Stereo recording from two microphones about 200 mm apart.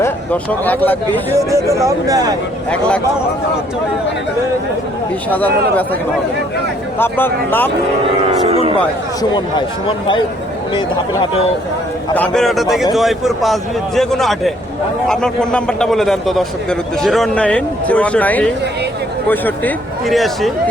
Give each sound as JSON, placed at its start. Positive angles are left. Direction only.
{"t": 0.0, "sound": "speech", "side_deg": 10}
{"t": 1.4, "sound": "speech", "side_deg": -15}
{"t": 5.3, "sound": "speech", "side_deg": 10}
{"t": 7.0, "sound": "speech", "side_deg": 10}
{"t": 8.4, "sound": "speech", "side_deg": -30}
{"t": 9.3, "sound": "speech", "side_deg": 25}
{"t": 12.1, "sound": "a man's voice", "side_deg": 5}